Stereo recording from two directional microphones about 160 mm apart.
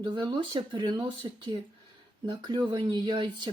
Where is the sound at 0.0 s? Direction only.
30° right (ahead or behind).